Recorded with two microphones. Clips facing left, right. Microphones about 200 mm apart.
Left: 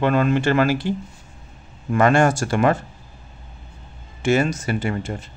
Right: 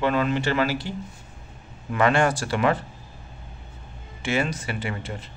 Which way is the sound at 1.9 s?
45° left (ahead or behind).